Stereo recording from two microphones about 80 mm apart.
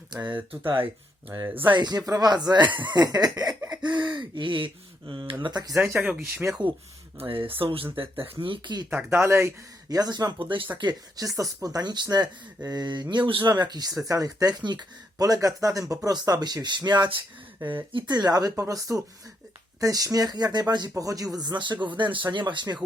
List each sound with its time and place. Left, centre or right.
0.2 s speech: right
1.5 s speech: right
1.7 s speech: right
3.8 s speech: right
5.8 s speech: right
8.4 s speech: right
9.0 s speech: right
9.9 s speech: right
11.3 s speech: right
13.5 s speech: right
17.9 s speech: right
20.9 s speech: right